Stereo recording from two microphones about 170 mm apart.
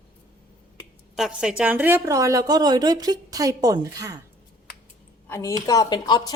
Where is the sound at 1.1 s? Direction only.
5° right (ahead or behind); by 4.2 s 20° right (ahead or behind).